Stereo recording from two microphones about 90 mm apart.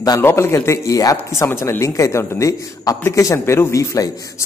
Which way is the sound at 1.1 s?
30° left (ahead or behind).